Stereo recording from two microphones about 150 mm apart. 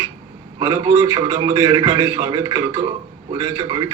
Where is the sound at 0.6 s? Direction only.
25° right (ahead or behind).